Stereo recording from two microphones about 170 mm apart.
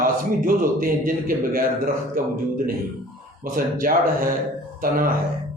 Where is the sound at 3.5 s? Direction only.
55° right (ahead or behind).